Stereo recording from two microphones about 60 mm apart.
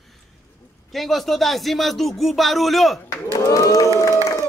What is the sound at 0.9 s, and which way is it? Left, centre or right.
Speech, centre.